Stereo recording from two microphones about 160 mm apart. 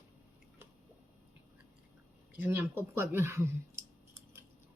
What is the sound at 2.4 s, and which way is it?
Speech, 15° right (ahead or behind).